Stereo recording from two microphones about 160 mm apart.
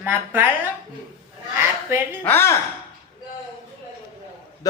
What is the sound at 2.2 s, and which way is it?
Speech, 15° left (ahead or behind).